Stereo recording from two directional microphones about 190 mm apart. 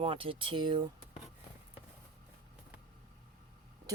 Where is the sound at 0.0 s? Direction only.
30° right (ahead or behind).